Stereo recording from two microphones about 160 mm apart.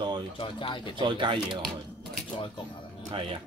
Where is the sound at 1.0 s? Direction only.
30° right (ahead or behind).